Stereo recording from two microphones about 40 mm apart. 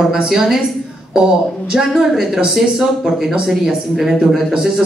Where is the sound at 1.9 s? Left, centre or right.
Centre.